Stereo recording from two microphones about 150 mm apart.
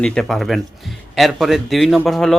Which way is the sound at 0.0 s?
5° left (ahead or behind).